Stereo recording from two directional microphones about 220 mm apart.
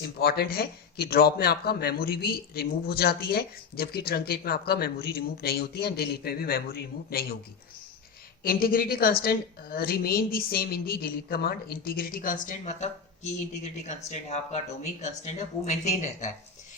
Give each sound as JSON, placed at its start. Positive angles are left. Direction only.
{"t": 0.0, "sound": "speech", "side_deg": 45}
{"t": 8.4, "sound": "a woman's voice", "side_deg": 40}